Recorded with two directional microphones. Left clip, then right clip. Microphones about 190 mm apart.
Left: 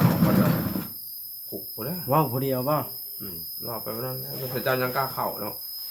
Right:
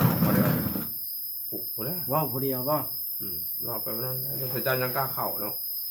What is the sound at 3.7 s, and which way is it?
Speech, 5° right (ahead or behind).